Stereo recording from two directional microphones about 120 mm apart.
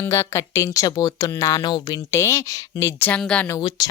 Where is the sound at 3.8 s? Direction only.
35° left (ahead or behind).